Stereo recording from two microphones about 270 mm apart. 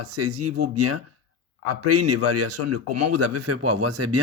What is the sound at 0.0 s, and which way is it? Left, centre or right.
A man's voice, right.